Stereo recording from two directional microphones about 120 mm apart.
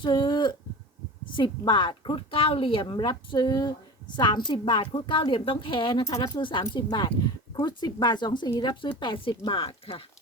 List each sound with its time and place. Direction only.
0.0 s speech: 40° left (ahead or behind)